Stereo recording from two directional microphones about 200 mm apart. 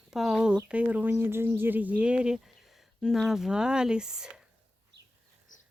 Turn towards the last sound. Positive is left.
turn(degrees=40)  # may be behind; listen again after turning